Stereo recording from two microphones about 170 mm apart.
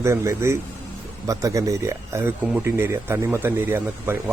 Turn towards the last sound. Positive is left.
turn(degrees=-15)  # may be behind; listen again after turning